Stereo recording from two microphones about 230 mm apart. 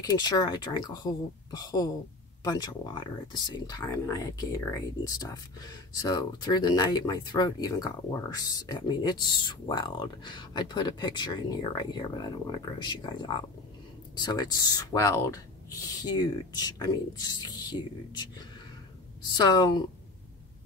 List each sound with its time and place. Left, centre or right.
0.0 s speech: centre
19.3 s speech: centre